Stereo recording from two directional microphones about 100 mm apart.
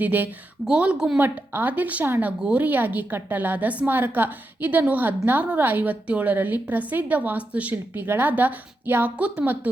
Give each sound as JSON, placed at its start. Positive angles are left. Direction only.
{"t": 0.0, "sound": "a woman's voice", "side_deg": -20}
{"t": 1.2, "sound": "a woman's voice", "side_deg": -20}